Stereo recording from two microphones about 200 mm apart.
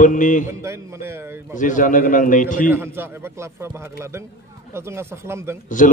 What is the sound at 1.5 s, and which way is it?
A man's voice, 40° left (ahead or behind).